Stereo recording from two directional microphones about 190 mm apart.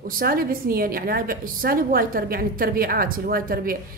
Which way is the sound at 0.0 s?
50° right (ahead or behind).